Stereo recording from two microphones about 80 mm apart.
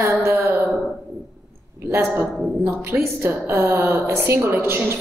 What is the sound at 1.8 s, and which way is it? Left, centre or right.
A woman's voice, right.